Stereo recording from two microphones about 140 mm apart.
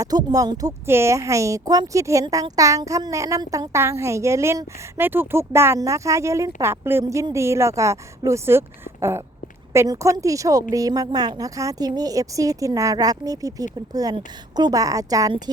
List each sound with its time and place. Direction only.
0.0 s a woman's voice: 30° right (ahead or behind)